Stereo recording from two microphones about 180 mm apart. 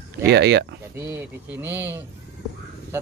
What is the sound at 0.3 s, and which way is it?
Speech, 70° right (ahead or behind).